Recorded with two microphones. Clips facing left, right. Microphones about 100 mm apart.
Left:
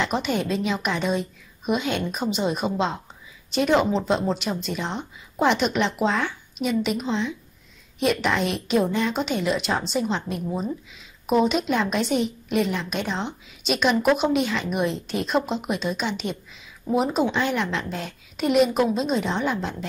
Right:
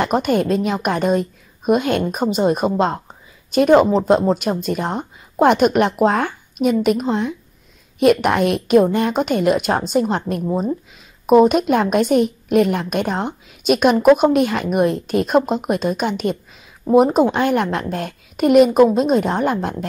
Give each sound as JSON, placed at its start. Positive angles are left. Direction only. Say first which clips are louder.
{"t": 0.0, "sound": "a woman's voice", "louder": "right 7 dB", "side_deg": -50}